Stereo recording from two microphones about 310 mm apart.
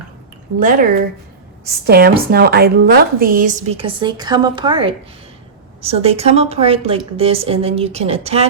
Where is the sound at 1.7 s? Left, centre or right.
Right.